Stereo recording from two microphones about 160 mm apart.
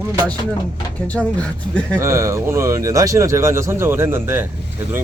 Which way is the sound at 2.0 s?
20° right (ahead or behind).